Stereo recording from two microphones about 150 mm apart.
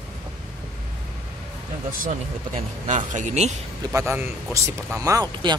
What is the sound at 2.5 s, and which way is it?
Speech, 50° right (ahead or behind).